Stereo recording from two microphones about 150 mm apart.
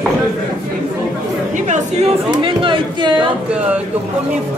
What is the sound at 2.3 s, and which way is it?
Chatter, 35° right (ahead or behind).